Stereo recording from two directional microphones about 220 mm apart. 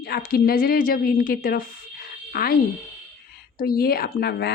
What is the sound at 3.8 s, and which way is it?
Speech, 40° left (ahead or behind).